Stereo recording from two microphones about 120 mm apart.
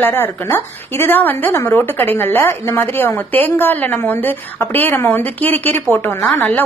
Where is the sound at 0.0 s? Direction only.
20° left (ahead or behind).